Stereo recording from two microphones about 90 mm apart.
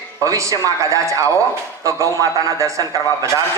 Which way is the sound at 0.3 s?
40° right (ahead or behind).